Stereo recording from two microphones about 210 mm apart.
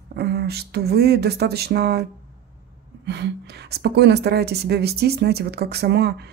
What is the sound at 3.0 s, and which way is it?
Speech, 55° right (ahead or behind).